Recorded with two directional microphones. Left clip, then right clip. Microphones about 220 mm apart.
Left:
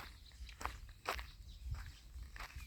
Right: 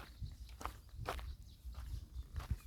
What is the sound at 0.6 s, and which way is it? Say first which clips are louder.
Walk: left 2 dB; centre (ahead or behind).